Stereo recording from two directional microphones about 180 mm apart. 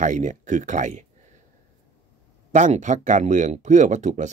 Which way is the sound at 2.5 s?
40° right (ahead or behind).